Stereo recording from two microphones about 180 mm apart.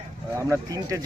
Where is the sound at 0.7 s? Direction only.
20° right (ahead or behind).